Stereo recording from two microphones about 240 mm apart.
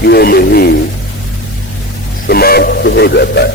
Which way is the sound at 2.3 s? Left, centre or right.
Left.